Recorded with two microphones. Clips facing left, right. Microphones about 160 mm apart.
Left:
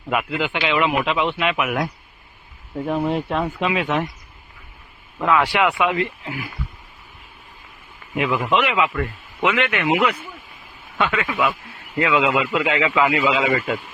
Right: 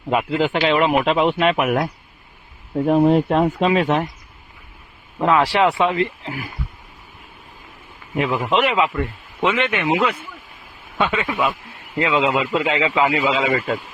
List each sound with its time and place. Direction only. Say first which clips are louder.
0.1 s speech: right 4 dB; 30° right (ahead or behind)
5.2 s speech: right 2 dB; 35° right (ahead or behind)
8.1 s speech: right 1 dB; 35° right (ahead or behind)
9.0 s a man's voice: right 1 dB; 20° right (ahead or behind)